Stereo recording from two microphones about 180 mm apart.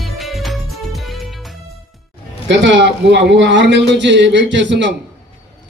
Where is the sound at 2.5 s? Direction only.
90° right.